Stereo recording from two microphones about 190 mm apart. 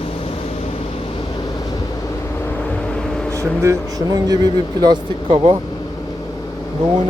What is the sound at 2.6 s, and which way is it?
Vehicle, 5° left (ahead or behind).